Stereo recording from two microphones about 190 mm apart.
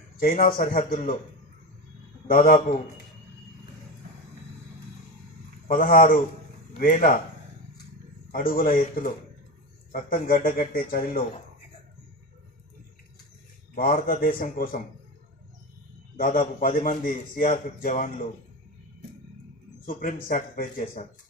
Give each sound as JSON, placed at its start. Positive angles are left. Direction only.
{"t": 0.6, "sound": "a man's voice", "side_deg": 45}
{"t": 2.2, "sound": "a man's voice", "side_deg": 50}
{"t": 5.7, "sound": "a man's voice", "side_deg": 50}
{"t": 8.3, "sound": "a man's voice", "side_deg": 50}
{"t": 13.7, "sound": "a man's voice", "side_deg": 50}
{"t": 16.2, "sound": "a man's voice", "side_deg": 45}
{"t": 19.9, "sound": "a man's voice", "side_deg": 45}